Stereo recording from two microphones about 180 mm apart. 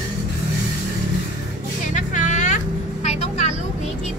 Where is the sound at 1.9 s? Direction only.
45° left (ahead or behind).